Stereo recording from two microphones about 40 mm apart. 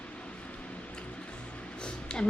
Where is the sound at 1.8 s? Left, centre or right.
Left.